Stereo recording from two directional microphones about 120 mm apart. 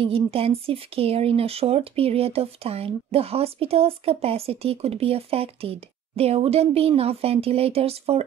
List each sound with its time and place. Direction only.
0.0 s speech: 50° right (ahead or behind)